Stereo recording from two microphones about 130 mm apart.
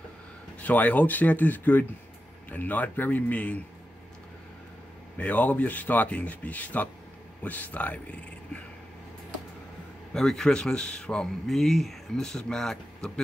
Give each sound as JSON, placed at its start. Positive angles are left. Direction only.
{"t": 0.6, "sound": "speech", "side_deg": 10}
{"t": 5.1, "sound": "speech", "side_deg": 10}
{"t": 10.1, "sound": "speech", "side_deg": 5}